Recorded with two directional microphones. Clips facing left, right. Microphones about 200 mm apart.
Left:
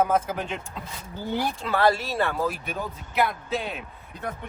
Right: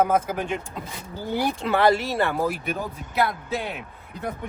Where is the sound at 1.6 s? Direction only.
20° right (ahead or behind).